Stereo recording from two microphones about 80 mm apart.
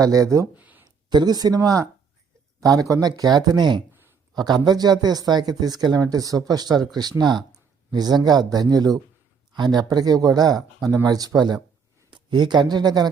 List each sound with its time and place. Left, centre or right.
0.0 s speech: right
0.5 s a sound: right
1.1 s speech: right